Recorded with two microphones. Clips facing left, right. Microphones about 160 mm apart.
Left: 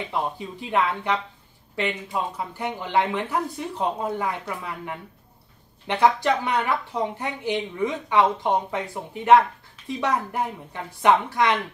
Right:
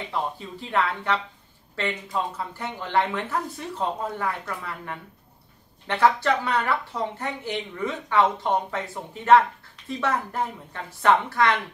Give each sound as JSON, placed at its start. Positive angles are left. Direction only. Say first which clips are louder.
{"t": 0.1, "sound": "a woman's voice", "louder": "even", "side_deg": 15}